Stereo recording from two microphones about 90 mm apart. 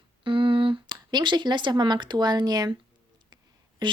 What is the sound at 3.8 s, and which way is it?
Speech, 55° right (ahead or behind).